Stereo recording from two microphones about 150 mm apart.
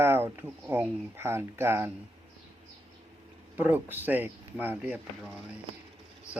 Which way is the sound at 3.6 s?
15° right (ahead or behind).